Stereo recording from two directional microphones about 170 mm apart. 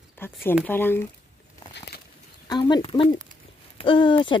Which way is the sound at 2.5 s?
25° left (ahead or behind).